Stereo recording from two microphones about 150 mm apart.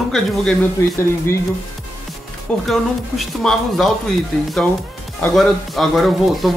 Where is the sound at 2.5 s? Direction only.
5° left (ahead or behind).